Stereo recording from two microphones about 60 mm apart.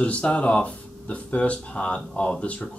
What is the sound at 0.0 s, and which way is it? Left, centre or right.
Speech, centre.